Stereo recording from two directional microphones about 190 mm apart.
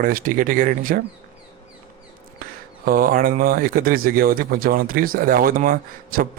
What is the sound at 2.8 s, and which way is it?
Speech, 45° right (ahead or behind).